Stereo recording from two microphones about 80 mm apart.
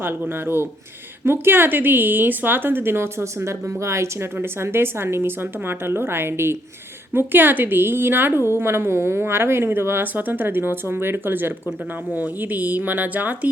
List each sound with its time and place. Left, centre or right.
0.0 s a woman's voice: right